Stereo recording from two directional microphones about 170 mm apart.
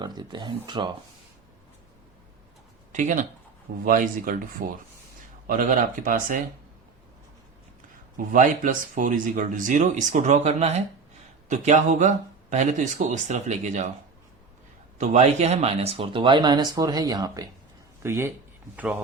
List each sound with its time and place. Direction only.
0.0 s speech: 25° right (ahead or behind)
2.9 s speech: 45° right (ahead or behind)
8.3 s speech: 50° right (ahead or behind)
14.9 s speech: 45° right (ahead or behind); by 18.3 s 15° right (ahead or behind)